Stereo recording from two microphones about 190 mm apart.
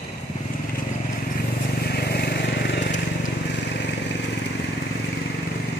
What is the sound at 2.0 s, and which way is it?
Vehicle, 60° left (ahead or behind).